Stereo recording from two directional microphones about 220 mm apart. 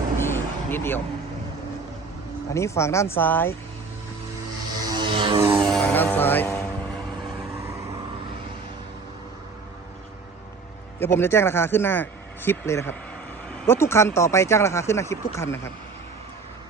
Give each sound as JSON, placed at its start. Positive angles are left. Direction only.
{"t": 0.2, "sound": "vehicle", "side_deg": 10}
{"t": 2.5, "sound": "speech", "side_deg": 15}
{"t": 4.9, "sound": "music", "side_deg": -20}
{"t": 5.7, "sound": "music", "side_deg": 5}
{"t": 11.0, "sound": "speech", "side_deg": 10}